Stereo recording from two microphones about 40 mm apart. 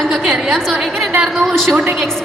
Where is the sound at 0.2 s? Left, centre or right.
Centre.